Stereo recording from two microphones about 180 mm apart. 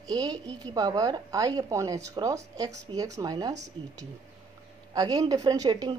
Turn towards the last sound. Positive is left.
turn(degrees=-20)  # may be behind; listen again after turning